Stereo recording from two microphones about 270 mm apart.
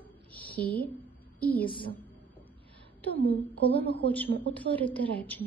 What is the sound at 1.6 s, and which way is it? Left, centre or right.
Speech, centre.